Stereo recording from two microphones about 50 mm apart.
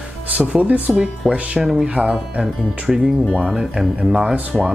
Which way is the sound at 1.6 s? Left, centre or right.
Centre.